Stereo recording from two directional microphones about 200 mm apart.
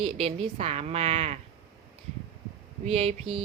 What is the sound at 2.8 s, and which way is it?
Speech, 30° right (ahead or behind).